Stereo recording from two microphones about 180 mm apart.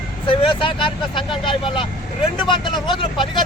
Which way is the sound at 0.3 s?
30° left (ahead or behind).